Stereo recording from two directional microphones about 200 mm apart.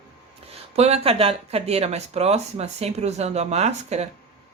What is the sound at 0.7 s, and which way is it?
Speech, 30° right (ahead or behind).